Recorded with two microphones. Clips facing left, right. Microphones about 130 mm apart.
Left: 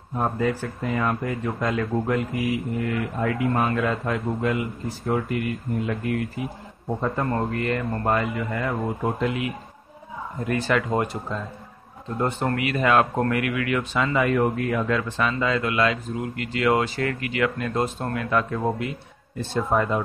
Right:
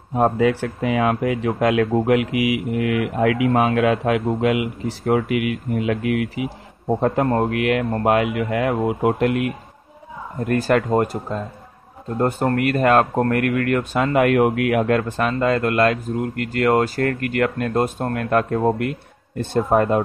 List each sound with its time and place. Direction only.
0.1 s speech: 80° right
7.0 s a man's voice: 75° right (ahead or behind)
10.4 s speech: 50° right (ahead or behind)